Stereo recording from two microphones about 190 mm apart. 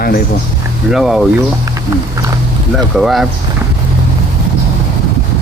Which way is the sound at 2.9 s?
Centre (ahead or behind).